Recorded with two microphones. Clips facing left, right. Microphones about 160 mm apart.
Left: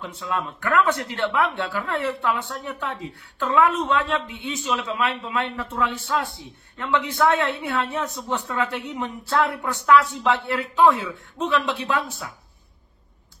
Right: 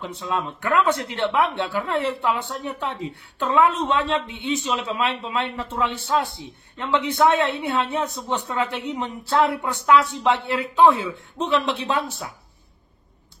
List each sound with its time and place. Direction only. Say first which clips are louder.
0.0 s speech: right 1 dB; 25° right (ahead or behind)